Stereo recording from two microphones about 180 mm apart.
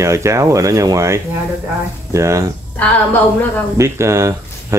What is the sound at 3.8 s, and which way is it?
Speech, 15° right (ahead or behind).